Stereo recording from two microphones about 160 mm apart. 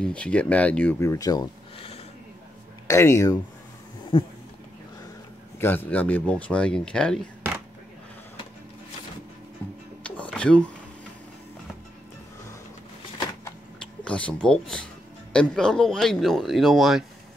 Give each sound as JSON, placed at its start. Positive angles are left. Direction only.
{"t": 0.0, "sound": "speech", "side_deg": 5}
{"t": 2.9, "sound": "speech", "side_deg": 20}
{"t": 5.9, "sound": "speech", "side_deg": 10}
{"t": 10.0, "sound": "a sound", "side_deg": 10}
{"t": 14.0, "sound": "speech", "side_deg": 5}